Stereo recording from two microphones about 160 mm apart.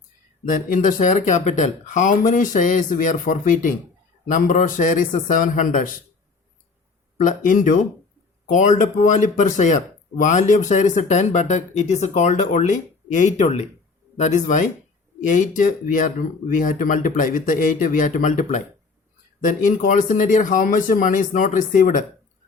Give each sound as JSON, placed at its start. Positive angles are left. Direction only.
{"t": 0.4, "sound": "speech", "side_deg": 55}
{"t": 7.2, "sound": "speech", "side_deg": 55}